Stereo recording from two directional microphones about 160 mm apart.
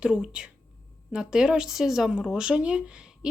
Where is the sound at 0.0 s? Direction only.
5° right (ahead or behind).